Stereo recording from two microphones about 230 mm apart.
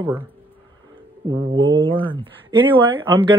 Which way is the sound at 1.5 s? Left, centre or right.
Right.